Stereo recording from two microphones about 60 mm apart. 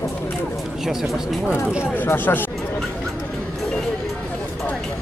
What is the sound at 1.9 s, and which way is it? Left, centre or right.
Speech, left.